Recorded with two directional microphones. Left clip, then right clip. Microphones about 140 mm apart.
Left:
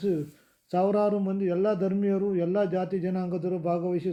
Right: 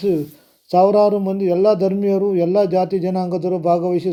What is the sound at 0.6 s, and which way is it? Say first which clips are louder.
Speech: right 12 dB; 15° right (ahead or behind).